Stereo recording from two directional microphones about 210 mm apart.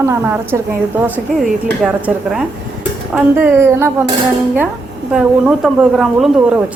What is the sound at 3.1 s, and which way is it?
Speech, 10° right (ahead or behind).